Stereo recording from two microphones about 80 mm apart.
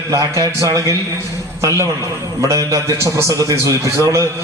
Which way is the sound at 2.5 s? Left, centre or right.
Right.